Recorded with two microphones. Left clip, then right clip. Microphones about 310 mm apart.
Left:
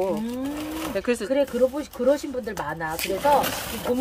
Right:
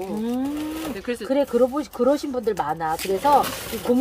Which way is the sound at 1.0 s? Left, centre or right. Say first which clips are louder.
Left 8 dB; centre.